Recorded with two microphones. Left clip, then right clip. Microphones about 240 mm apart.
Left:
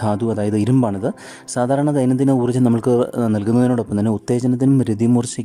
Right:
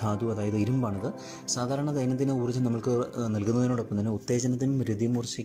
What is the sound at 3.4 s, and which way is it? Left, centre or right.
A man's voice, left.